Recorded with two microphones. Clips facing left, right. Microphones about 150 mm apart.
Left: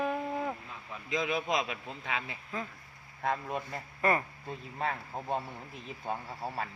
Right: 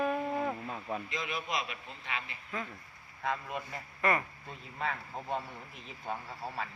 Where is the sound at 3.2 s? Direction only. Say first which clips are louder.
Left 3 dB; 35° left (ahead or behind).